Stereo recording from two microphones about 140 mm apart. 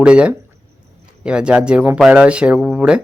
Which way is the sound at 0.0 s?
10° right (ahead or behind).